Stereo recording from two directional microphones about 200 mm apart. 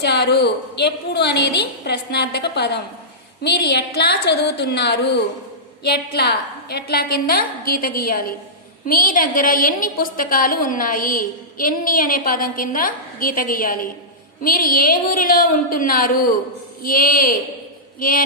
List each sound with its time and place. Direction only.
0.0 s a woman's voice: 55° left (ahead or behind)